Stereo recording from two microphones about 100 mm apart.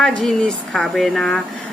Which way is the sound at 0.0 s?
5° left (ahead or behind).